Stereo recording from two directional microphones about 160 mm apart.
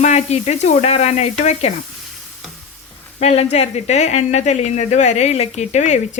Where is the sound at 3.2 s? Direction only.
40° left (ahead or behind).